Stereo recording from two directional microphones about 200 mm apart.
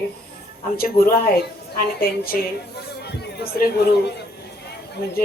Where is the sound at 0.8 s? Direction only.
45° left (ahead or behind).